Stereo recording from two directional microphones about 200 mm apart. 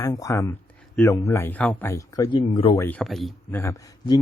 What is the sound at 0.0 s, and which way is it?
Speech, 15° left (ahead or behind).